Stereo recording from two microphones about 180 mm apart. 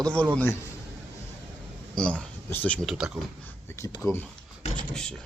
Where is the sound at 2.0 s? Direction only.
5° left (ahead or behind).